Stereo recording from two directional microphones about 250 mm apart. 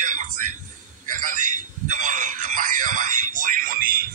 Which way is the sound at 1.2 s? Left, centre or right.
Right.